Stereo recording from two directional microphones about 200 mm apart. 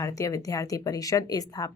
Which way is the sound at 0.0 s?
15° left (ahead or behind).